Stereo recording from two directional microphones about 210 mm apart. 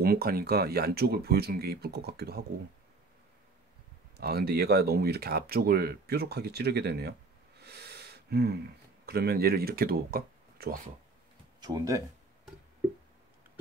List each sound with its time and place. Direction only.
0.0 s speech: 45° right (ahead or behind)
4.2 s speech: 50° right (ahead or behind)
7.6 s a sound: 50° right (ahead or behind)
9.0 s speech: 50° right (ahead or behind)
11.6 s speech: 15° right (ahead or behind)